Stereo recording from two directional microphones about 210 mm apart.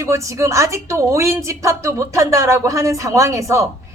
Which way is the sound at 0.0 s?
15° right (ahead or behind).